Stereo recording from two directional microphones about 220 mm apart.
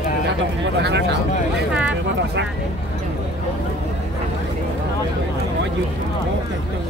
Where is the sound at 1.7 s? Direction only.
5° right (ahead or behind).